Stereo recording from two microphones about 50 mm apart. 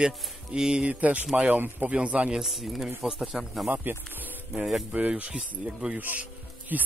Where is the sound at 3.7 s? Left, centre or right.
Right; by 6.0 s centre.